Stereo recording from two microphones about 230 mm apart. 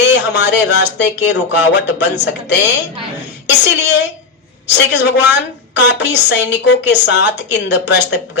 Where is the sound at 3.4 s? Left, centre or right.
Left.